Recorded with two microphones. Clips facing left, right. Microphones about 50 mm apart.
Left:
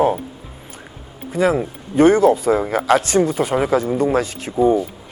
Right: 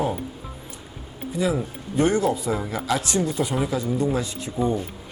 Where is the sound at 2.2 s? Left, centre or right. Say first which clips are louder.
Left 9 dB; left.